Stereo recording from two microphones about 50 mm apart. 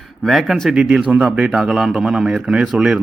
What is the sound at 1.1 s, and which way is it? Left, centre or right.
Speech, right.